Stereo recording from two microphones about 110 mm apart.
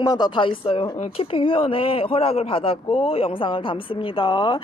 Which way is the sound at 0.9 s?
75° left (ahead or behind).